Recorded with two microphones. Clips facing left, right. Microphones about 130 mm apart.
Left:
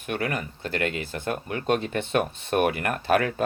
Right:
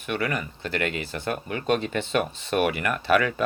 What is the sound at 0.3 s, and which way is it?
Speech, 50° left (ahead or behind).